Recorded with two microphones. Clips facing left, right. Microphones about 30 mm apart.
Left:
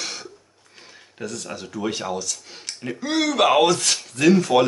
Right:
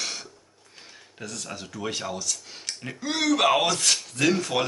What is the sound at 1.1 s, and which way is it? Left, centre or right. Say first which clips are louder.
Speech: left 5 dB; centre.